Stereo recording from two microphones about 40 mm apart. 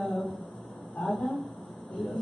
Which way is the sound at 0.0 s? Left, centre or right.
Centre.